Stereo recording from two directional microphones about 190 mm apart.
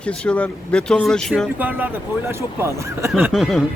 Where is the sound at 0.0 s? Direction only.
5° left (ahead or behind).